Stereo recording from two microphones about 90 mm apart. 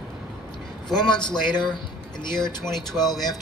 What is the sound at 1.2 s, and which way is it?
Speech, 55° left (ahead or behind).